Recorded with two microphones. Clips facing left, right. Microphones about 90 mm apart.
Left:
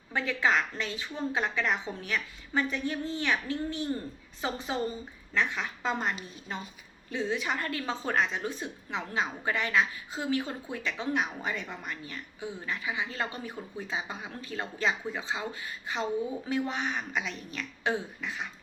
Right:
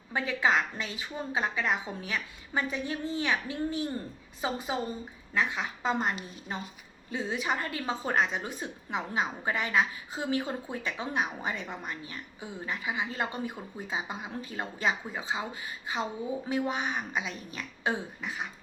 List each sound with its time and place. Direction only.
0.1 s a woman's voice: 15° right (ahead or behind)